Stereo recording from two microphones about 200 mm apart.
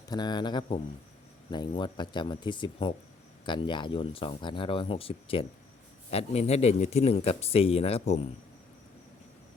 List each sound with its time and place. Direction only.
0.1 s speech: 20° left (ahead or behind)